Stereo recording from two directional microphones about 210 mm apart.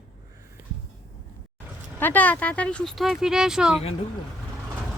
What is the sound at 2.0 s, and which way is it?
Speech, 10° left (ahead or behind).